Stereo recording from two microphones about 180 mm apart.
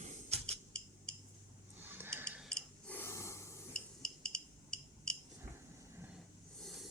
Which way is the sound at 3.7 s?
5° left (ahead or behind).